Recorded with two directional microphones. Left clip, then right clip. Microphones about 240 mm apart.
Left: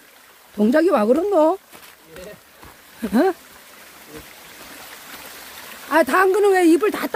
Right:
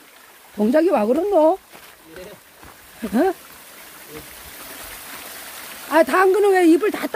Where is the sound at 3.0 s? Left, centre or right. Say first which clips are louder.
Left 1 dB; centre.